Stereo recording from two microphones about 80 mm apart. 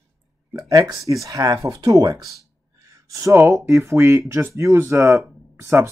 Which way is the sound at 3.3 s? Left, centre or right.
Right.